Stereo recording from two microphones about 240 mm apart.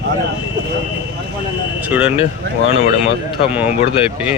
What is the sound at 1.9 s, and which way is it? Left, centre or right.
Speech, centre.